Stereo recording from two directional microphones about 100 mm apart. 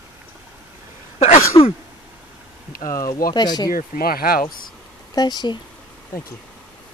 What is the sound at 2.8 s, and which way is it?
Speech, 35° left (ahead or behind).